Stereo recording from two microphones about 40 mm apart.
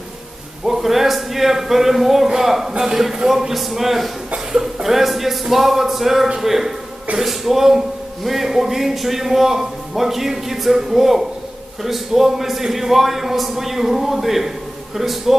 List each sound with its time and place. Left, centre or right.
0.6 s a man's voice: centre